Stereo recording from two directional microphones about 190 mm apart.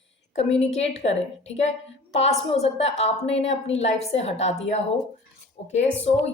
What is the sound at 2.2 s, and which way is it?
A woman's voice, 35° left (ahead or behind).